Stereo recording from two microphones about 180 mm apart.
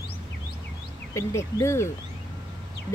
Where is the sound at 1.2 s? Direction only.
15° left (ahead or behind).